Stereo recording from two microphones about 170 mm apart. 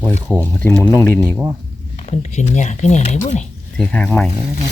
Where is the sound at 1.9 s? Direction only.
40° left (ahead or behind).